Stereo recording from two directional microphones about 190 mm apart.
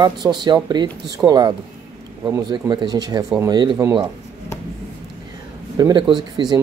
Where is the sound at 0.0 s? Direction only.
20° right (ahead or behind).